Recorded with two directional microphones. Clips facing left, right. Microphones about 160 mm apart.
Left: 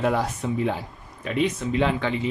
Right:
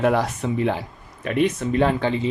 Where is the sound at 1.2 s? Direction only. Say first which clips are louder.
Right 3 dB; 55° right (ahead or behind); by 2.3 s 30° right (ahead or behind).